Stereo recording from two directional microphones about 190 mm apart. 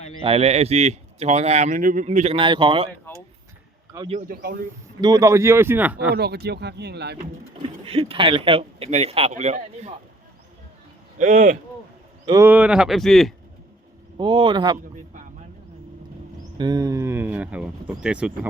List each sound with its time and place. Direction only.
0.2 s speech: 30° right (ahead or behind)
2.0 s a man's voice: 35° right (ahead or behind)
4.1 s speech: 45° right (ahead or behind)
4.9 s speech: 20° right (ahead or behind)
6.1 s speech: 55° right (ahead or behind)
7.6 s speech: 30° right (ahead or behind)
11.2 s speech: 40° right (ahead or behind)
12.2 s speech: 15° right (ahead or behind); by 13.3 s centre (ahead or behind)
14.2 s a man's voice: 25° right (ahead or behind)
16.6 s speech: 20° right (ahead or behind)